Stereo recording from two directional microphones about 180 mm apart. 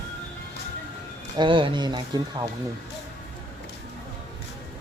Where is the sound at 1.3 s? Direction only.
25° right (ahead or behind).